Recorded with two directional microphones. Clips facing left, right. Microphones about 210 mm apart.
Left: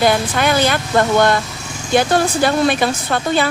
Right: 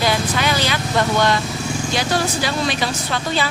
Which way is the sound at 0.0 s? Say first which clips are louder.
Left 4 dB; 50° left (ahead or behind).